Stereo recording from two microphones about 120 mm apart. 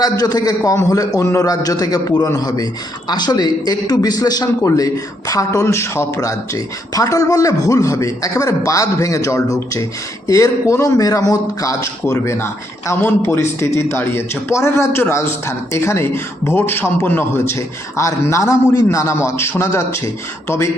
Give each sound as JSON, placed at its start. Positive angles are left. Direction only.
{"t": 0.0, "sound": "a man's voice", "side_deg": 35}